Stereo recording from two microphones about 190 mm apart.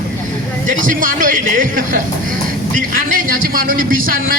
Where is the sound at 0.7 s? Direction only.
45° right (ahead or behind).